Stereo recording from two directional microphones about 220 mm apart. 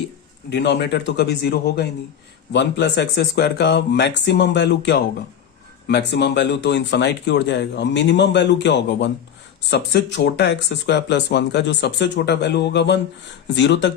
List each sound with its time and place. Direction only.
0.5 s speech: 50° left (ahead or behind)